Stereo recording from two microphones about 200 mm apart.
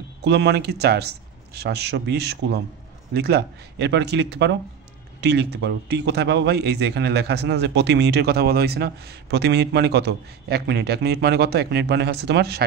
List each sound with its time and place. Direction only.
0.2 s a man's voice: 60° right (ahead or behind)